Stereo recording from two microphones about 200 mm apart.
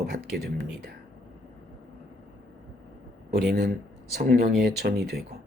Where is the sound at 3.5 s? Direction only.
55° right (ahead or behind).